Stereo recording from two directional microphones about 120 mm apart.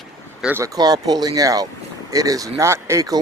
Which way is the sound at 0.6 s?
35° right (ahead or behind).